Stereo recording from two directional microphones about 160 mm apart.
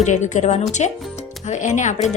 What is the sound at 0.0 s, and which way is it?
Speech, 45° left (ahead or behind).